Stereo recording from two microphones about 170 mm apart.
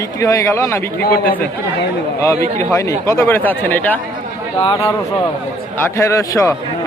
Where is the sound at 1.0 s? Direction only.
70° left (ahead or behind).